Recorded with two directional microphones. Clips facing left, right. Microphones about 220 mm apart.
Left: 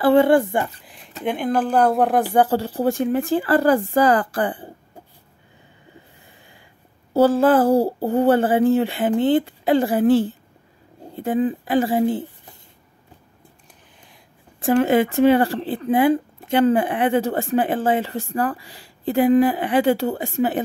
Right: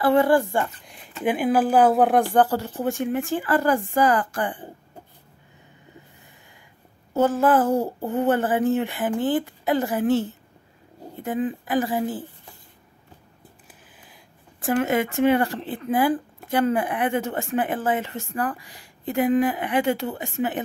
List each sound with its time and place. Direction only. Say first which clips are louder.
0.0 s speech: left 4 dB; 30° left (ahead or behind)
0.8 s speech: right 1 dB; centre (ahead or behind)
2.5 s speech: left 5 dB; 35° left (ahead or behind)
7.2 s speech: left 4 dB; 30° left (ahead or behind)
14.6 s speech: left 5 dB; 30° left (ahead or behind)